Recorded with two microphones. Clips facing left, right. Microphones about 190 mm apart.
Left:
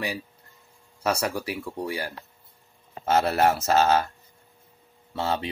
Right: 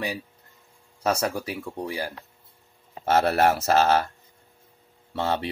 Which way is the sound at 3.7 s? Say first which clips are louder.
Even; 35° right (ahead or behind).